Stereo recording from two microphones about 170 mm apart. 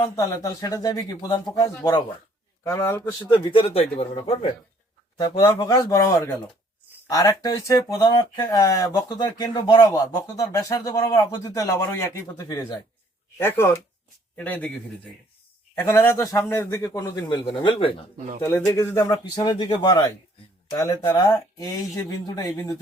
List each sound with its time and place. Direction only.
0.0 s speech: 20° left (ahead or behind)
3.2 s speech: 30° left (ahead or behind)
5.5 s speech: 20° left (ahead or behind)
18.4 s speech: 15° left (ahead or behind)